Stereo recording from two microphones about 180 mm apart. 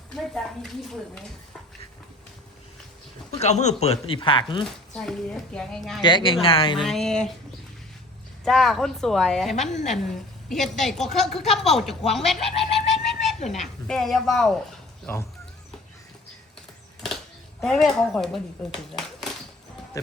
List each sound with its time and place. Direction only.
0.3 s speech: centre (ahead or behind)
3.4 s speech: 40° left (ahead or behind)
4.9 s speech: 5° left (ahead or behind)
6.0 s speech: 25° left (ahead or behind)
6.8 s speech: 5° left (ahead or behind)
8.4 s speech: centre (ahead or behind)
9.6 s speech: 40° left (ahead or behind)
9.9 s a woman's voice: centre (ahead or behind)
15.0 s speech: 10° left (ahead or behind)
17.6 s speech: centre (ahead or behind)